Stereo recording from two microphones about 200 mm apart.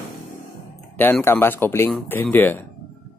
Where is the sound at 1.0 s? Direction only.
10° left (ahead or behind).